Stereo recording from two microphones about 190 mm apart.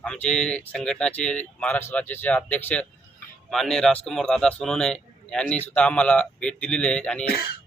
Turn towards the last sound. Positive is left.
turn(degrees=55)  # may be behind; listen again after turning